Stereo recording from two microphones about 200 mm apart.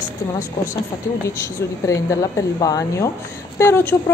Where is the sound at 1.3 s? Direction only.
15° left (ahead or behind).